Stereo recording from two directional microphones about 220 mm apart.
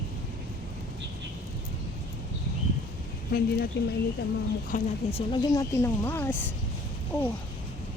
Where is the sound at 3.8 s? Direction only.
50° left (ahead or behind).